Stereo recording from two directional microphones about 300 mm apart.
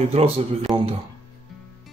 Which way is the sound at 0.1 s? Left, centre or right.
Centre.